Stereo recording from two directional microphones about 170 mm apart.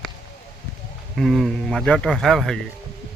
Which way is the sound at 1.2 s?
Centre (ahead or behind).